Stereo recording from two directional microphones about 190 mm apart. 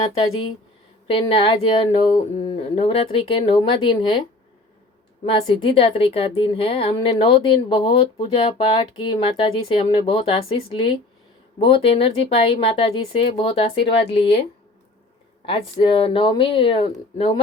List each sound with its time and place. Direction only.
1.0 s a woman's voice: 30° left (ahead or behind)
5.2 s a woman's voice: 30° left (ahead or behind)
15.4 s a woman's voice: 25° left (ahead or behind)